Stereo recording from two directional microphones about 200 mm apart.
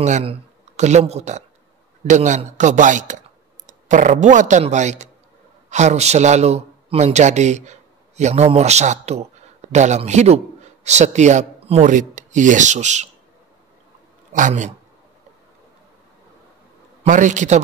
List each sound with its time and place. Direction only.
0.0 s a man's voice: 30° right (ahead or behind)
14.3 s a man's voice: 40° right (ahead or behind)
17.0 s a man's voice: 40° right (ahead or behind)